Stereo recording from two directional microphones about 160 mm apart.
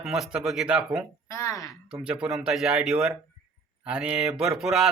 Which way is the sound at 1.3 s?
20° left (ahead or behind).